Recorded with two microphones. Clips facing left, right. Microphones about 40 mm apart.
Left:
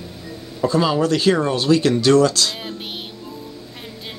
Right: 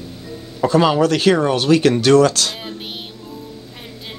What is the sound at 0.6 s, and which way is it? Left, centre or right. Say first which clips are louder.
Speech: right 3 dB; right.